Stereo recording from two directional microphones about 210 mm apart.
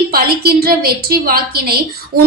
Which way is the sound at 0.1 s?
45° right (ahead or behind).